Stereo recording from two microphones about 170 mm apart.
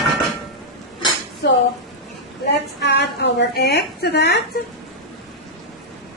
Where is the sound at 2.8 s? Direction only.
75° left (ahead or behind).